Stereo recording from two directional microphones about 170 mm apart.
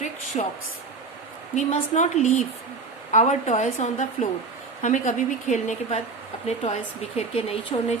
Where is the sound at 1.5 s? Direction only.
45° left (ahead or behind).